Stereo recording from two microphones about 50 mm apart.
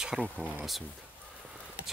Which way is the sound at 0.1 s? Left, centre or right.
Centre.